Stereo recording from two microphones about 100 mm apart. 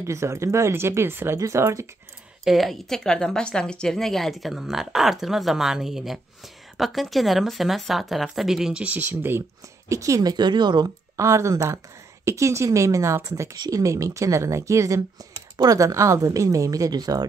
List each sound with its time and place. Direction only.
0.0 s speech: 30° right (ahead or behind)
2.4 s a woman's voice: centre (ahead or behind)
8.8 s speech: 20° right (ahead or behind)
9.8 s speech: 30° right (ahead or behind)
10.3 s speech: 50° right (ahead or behind)
11.1 s speech: 30° right (ahead or behind)